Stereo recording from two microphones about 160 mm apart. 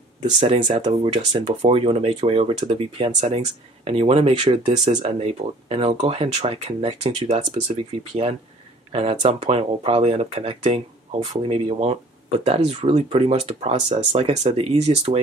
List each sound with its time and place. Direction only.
0.4 s speech: 35° right (ahead or behind)